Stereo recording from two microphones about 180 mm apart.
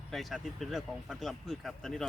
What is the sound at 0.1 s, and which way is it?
Speech, centre (ahead or behind).